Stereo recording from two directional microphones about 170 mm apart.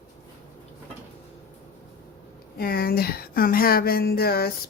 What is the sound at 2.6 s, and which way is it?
Speech, 65° left (ahead or behind).